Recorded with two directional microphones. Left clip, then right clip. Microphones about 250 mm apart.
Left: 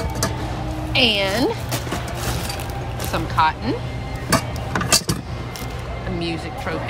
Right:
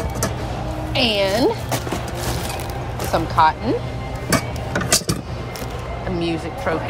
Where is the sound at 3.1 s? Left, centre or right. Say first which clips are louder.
Right 3 dB; left.